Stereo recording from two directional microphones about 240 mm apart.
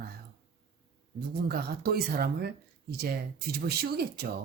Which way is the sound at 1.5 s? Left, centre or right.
Right.